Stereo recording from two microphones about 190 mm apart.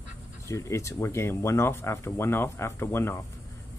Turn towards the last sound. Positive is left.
turn(degrees=15)  # may be behind; listen again after turning